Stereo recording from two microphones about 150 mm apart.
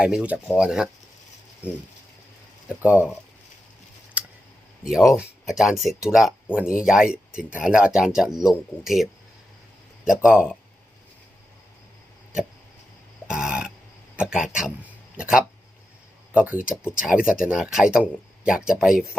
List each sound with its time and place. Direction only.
0.0 s speech: 5° right (ahead or behind)
2.6 s speech: 10° right (ahead or behind)
4.2 s a sound: 10° right (ahead or behind)
4.9 s speech: 5° right (ahead or behind)
10.2 s speech: 5° right (ahead or behind)
13.2 s burping: 5° right (ahead or behind)
14.2 s speech: 5° right (ahead or behind)